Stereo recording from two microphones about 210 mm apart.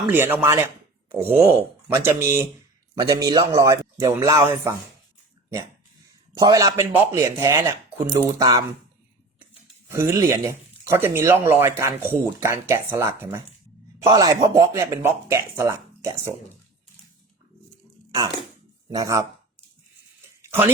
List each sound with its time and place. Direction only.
0.1 s a man's voice: 10° right (ahead or behind)
6.3 s speech: 15° right (ahead or behind)
9.9 s speech: 10° right (ahead or behind)
18.9 s speech: 15° right (ahead or behind)
20.4 s a sound: 10° right (ahead or behind)